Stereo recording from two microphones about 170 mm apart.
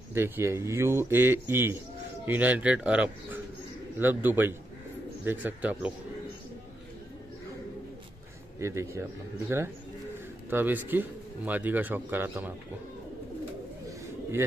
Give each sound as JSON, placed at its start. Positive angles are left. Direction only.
{"t": 0.1, "sound": "speech", "side_deg": -15}
{"t": 8.5, "sound": "speech", "side_deg": -15}
{"t": 10.5, "sound": "speech", "side_deg": -10}